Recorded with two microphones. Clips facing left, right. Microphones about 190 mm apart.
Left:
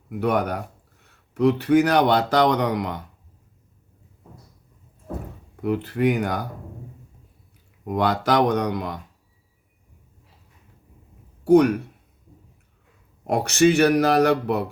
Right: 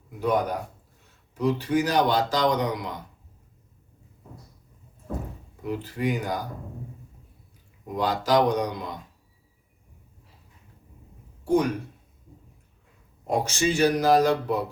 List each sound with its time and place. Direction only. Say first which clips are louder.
0.1 s a man's voice: left 2 dB; 65° left (ahead or behind)
5.6 s speech: left 6 dB; 65° left (ahead or behind)
7.9 s speech: left 3 dB; 65° left (ahead or behind)
11.4 s a man's voice: left 7 dB; 65° left (ahead or behind)
13.2 s a man's voice: left 7 dB; 65° left (ahead or behind)